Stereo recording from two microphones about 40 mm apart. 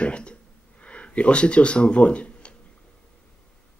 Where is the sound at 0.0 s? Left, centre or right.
Left.